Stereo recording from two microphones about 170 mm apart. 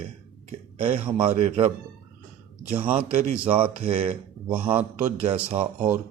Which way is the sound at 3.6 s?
30° right (ahead or behind).